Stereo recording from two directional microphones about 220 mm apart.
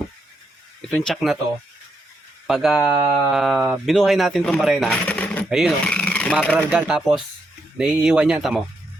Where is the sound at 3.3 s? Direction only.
Centre (ahead or behind).